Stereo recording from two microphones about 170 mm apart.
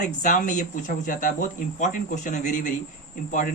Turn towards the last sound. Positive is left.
turn(degrees=50)  # may be behind; listen again after turning